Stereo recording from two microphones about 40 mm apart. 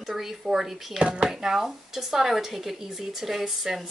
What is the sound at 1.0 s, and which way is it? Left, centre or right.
Speech, right.